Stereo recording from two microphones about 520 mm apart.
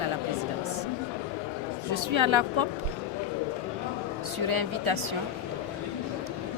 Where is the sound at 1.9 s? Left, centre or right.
Right.